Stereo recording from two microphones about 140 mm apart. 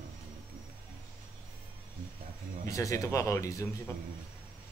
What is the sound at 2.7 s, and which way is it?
A man's voice, 20° left (ahead or behind).